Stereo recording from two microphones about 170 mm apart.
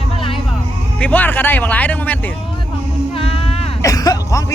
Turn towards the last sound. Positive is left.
turn(degrees=20)  # may be behind; listen again after turning